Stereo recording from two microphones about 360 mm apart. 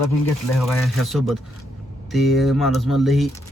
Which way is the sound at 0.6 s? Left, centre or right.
Centre.